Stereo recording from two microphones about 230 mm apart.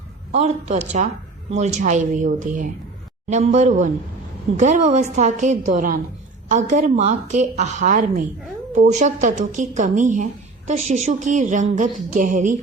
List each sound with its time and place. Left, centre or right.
0.3 s a woman's voice: right